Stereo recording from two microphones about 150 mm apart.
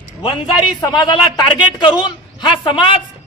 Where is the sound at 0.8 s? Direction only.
25° left (ahead or behind).